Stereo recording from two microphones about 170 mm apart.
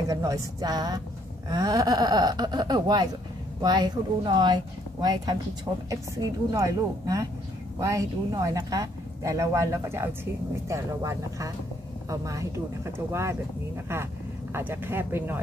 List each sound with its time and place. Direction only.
0.1 s speech: 20° right (ahead or behind)
14.5 s speech: 15° right (ahead or behind)